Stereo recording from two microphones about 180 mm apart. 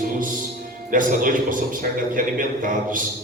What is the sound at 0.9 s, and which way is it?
A man's voice, 50° right (ahead or behind).